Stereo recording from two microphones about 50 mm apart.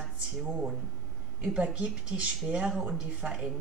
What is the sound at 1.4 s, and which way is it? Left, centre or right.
Speech, centre.